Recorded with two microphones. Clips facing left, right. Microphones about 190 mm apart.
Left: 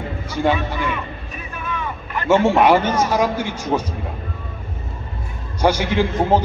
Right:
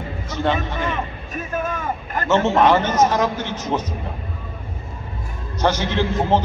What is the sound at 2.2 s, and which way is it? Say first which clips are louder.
A man's voice: left 2 dB; 10° left (ahead or behind).